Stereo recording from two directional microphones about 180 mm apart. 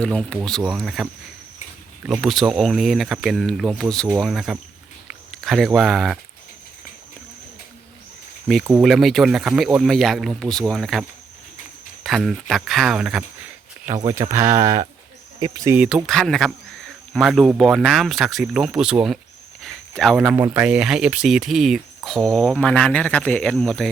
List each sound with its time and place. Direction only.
0.0 s speech: 5° left (ahead or behind)
2.0 s speech: centre (ahead or behind)
8.6 s speech: 5° right (ahead or behind)
12.0 s speech: centre (ahead or behind)
14.3 s speech: 15° right (ahead or behind)
15.7 s speech: 5° right (ahead or behind)
20.0 s speech: centre (ahead or behind)